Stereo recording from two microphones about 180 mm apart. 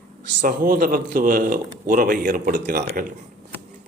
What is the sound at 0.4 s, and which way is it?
A man's voice, 50° right (ahead or behind).